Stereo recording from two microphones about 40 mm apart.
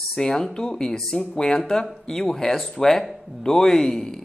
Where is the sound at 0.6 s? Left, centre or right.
Left.